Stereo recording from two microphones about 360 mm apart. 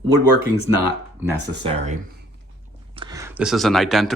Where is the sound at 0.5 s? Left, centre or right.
Left.